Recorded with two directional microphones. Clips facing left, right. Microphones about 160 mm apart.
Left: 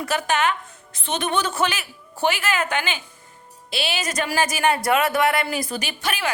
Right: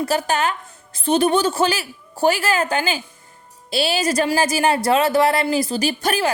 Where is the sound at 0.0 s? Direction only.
35° right (ahead or behind).